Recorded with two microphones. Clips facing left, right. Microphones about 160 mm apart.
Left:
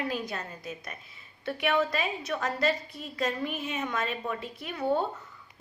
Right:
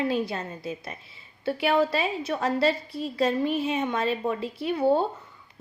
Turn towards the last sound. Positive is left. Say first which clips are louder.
# right 6 dB
turn(degrees=-30)  # may be behind; listen again after turning